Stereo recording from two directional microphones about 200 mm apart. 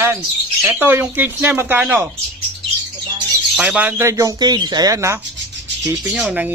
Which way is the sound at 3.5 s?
5° right (ahead or behind).